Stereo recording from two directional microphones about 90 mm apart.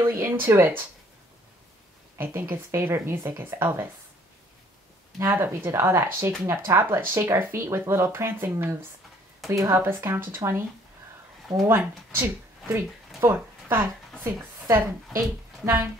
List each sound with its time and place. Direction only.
0.0 s speech: 30° right (ahead or behind)
2.1 s speech: 25° right (ahead or behind)
5.2 s speech: 30° right (ahead or behind)
11.6 s a woman's voice: 25° right (ahead or behind)